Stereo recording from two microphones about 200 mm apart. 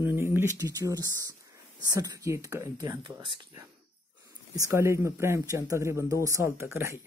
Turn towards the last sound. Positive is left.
turn(degrees=-15)  # may be behind; listen again after turning